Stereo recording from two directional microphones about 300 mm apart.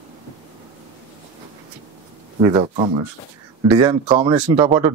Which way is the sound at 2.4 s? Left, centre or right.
Centre.